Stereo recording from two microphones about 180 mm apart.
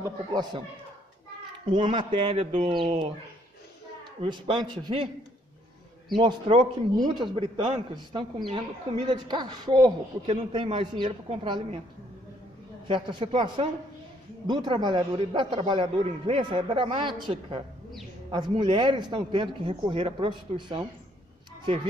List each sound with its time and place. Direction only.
0.0 s a woman's voice: 20° right (ahead or behind)
1.7 s a woman's voice: 25° right (ahead or behind)
4.2 s a woman's voice: 30° right (ahead or behind)
6.1 s a woman's voice: 30° right (ahead or behind)
12.8 s a woman's voice: 30° right (ahead or behind)